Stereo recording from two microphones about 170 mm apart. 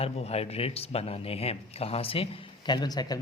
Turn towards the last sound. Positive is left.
turn(degrees=25)  # may be behind; listen again after turning